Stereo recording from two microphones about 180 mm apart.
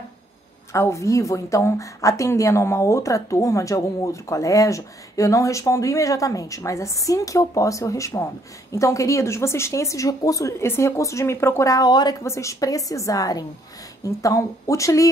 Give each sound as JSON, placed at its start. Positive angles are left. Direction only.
{"t": 0.7, "sound": "speech", "side_deg": 15}